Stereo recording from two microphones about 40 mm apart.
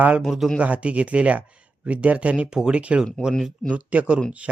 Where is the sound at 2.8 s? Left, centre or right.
Right.